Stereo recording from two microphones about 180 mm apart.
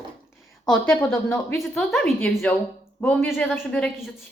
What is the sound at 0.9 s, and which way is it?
A woman's voice, 5° left (ahead or behind).